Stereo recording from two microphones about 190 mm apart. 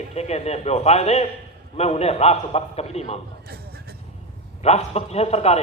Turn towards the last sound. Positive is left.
turn(degrees=35)  # may be behind; listen again after turning